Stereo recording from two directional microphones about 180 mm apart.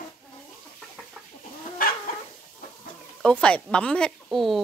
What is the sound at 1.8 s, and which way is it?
Chicken, 50° left (ahead or behind).